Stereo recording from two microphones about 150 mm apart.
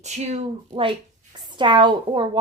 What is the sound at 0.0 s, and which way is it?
A woman's voice, 50° right (ahead or behind).